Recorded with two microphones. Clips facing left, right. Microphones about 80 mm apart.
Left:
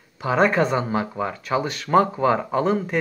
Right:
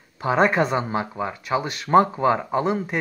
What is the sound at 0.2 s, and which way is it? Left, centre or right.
Speech, right.